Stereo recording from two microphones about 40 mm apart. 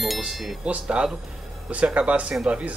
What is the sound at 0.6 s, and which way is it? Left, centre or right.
Speech, right.